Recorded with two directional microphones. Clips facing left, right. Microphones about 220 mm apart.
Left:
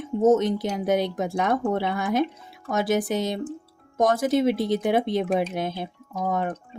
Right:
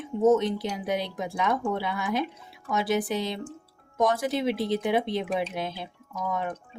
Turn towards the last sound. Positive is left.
turn(degrees=50)  # may be behind; listen again after turning